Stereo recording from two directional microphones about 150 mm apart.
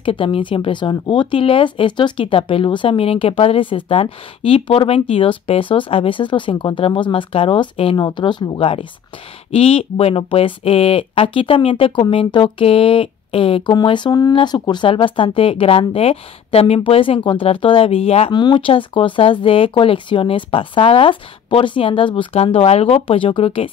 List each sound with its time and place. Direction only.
0.0 s speech: 35° left (ahead or behind)
18.3 s speech: 30° left (ahead or behind)